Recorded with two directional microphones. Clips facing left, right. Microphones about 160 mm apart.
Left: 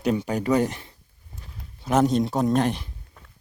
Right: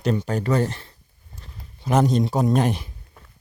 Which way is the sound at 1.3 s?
Centre (ahead or behind).